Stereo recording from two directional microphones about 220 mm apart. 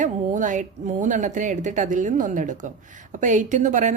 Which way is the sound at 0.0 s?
35° right (ahead or behind).